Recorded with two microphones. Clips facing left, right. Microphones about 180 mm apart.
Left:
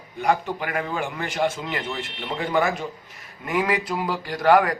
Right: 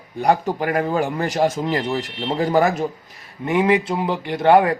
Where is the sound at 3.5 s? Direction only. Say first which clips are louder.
Right 6 dB; 25° right (ahead or behind).